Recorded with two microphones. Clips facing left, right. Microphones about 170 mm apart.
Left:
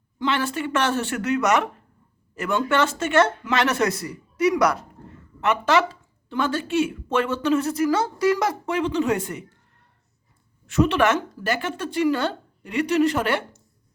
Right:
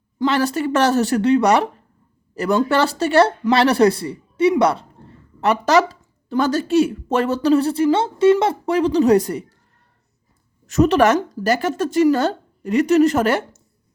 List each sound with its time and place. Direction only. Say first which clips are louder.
0.2 s speech: right 6 dB; 40° right (ahead or behind)
10.7 s speech: right 5 dB; 40° right (ahead or behind)